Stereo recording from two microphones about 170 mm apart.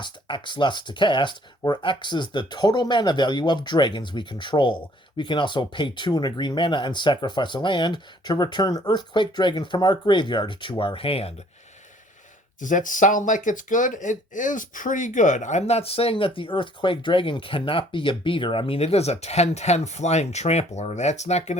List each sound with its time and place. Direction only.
0.0 s speech: 25° left (ahead or behind)
12.5 s speech: 50° left (ahead or behind)